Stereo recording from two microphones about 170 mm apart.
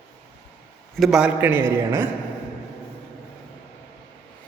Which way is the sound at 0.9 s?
Centre (ahead or behind).